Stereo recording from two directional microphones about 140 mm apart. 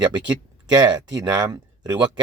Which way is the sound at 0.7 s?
30° right (ahead or behind).